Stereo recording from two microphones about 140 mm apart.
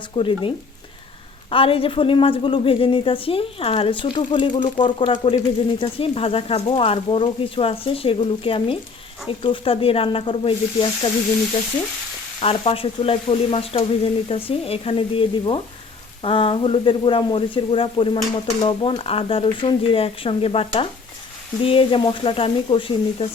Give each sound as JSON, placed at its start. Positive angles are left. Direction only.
{"t": 0.2, "sound": "speech", "side_deg": 40}
{"t": 12.4, "sound": "speech", "side_deg": 45}